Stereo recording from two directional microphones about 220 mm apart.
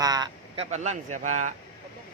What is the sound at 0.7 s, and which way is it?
Speech, 30° right (ahead or behind).